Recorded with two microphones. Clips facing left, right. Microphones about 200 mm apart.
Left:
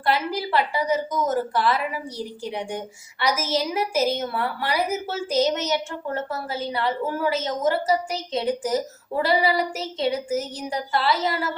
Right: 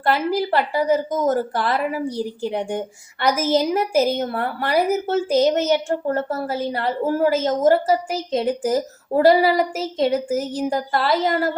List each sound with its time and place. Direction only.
0.0 s a woman's voice: 45° right (ahead or behind)